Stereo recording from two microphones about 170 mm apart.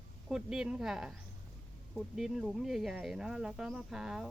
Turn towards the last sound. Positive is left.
turn(degrees=0)  # may be behind; listen again after turning